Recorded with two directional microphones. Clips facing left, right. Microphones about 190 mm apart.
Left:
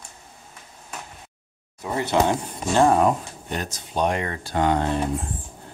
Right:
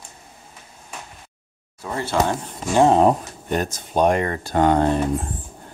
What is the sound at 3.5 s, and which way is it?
Speech, 50° right (ahead or behind).